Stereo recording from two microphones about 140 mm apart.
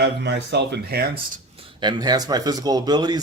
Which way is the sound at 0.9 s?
90° right.